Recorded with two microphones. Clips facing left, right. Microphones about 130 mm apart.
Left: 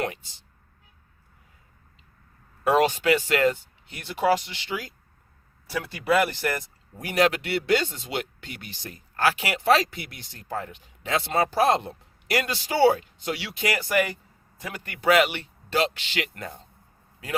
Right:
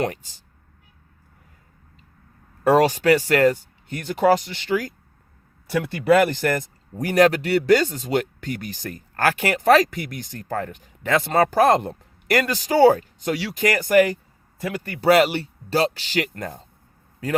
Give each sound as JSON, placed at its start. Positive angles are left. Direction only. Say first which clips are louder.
{"t": 0.0, "sound": "speech", "louder": "right 5 dB", "side_deg": -45}
{"t": 2.6, "sound": "speech", "louder": "right 4 dB", "side_deg": -40}